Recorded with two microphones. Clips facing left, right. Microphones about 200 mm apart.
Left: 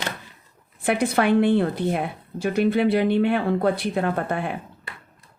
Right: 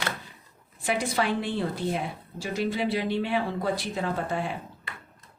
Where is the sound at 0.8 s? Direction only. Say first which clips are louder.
Left 6 dB; 60° left (ahead or behind).